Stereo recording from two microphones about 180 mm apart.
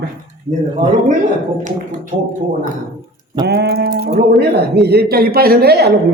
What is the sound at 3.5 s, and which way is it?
A man's voice, 65° right (ahead or behind).